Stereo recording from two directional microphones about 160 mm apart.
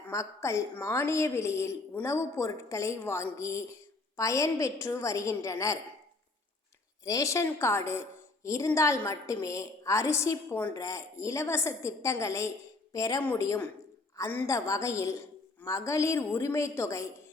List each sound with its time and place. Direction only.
0.1 s a woman's voice: 20° left (ahead or behind)
7.0 s a woman's voice: 20° left (ahead or behind)